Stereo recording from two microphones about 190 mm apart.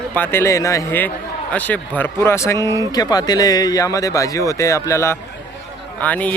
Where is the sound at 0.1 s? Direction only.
10° left (ahead or behind).